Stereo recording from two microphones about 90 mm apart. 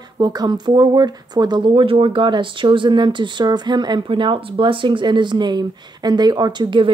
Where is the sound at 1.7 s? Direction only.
80° right; by 6.8 s 50° right (ahead or behind).